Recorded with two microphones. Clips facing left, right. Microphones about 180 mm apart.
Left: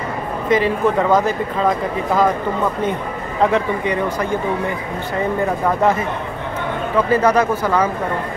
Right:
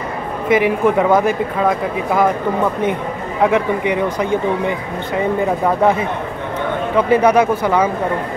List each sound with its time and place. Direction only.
0.5 s speech: 15° right (ahead or behind)
3.4 s speech: 15° right (ahead or behind)
7.1 s speech: 15° right (ahead or behind)